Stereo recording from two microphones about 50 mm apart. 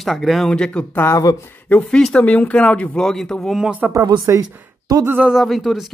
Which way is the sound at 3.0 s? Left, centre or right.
Centre.